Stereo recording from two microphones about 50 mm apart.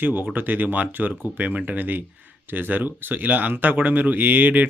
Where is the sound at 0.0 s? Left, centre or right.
Right.